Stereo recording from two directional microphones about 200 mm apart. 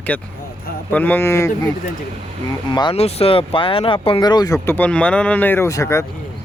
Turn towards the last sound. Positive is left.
turn(degrees=15)  # may be behind; listen again after turning